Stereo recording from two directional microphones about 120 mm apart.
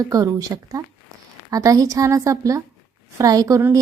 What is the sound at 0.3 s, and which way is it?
A woman's voice, 30° right (ahead or behind).